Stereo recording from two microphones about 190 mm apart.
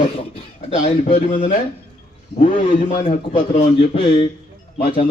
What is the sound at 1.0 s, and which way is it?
Speech, 30° left (ahead or behind).